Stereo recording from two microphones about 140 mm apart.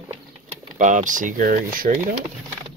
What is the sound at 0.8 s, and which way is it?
Speech, 65° right (ahead or behind).